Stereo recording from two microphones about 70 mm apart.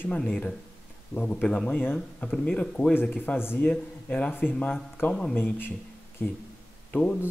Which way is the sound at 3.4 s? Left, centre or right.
Left.